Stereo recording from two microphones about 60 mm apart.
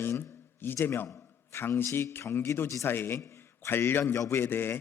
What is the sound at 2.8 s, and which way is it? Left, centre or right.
Speech, left.